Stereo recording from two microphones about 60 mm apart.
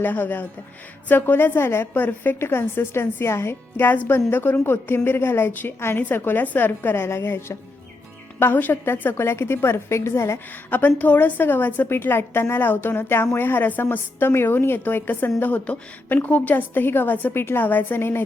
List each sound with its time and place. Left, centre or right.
0.0 s a woman's voice: left
1.5 s a woman's voice: left
8.5 s a woman's voice: left
10.7 s a woman's voice: left